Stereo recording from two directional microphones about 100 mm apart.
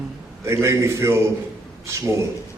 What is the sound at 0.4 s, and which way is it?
Speech, 30° right (ahead or behind).